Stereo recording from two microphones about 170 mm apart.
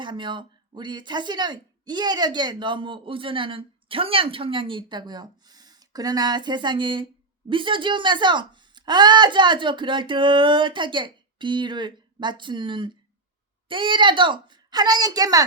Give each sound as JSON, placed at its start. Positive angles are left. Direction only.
{"t": 0.0, "sound": "speech", "side_deg": -30}